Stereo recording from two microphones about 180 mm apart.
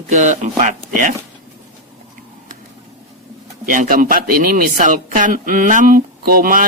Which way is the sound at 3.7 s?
50° right (ahead or behind).